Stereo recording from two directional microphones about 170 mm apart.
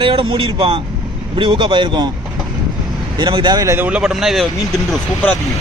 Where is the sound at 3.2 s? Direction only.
30° right (ahead or behind); by 4.5 s centre (ahead or behind).